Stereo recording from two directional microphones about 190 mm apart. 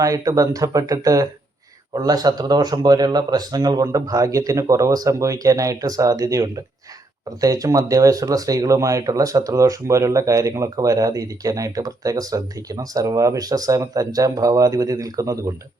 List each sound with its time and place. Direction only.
0.0 s speech: 20° right (ahead or behind)